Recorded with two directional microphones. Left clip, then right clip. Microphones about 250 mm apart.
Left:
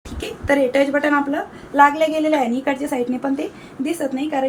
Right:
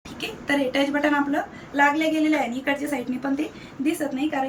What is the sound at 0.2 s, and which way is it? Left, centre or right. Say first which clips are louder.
Speech: left 6 dB; centre.